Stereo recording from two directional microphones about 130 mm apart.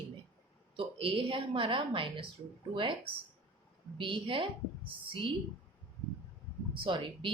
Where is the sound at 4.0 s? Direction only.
40° right (ahead or behind).